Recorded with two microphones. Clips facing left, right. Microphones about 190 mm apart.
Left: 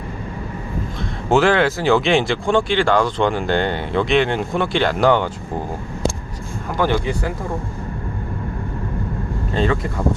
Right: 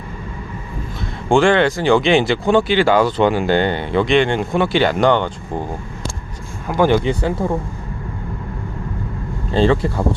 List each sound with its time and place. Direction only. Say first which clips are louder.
1.3 s speech: right 2 dB; 5° left (ahead or behind)
6.7 s speech: right 5 dB; 15° right (ahead or behind)
9.5 s speech: right 5 dB; 30° right (ahead or behind)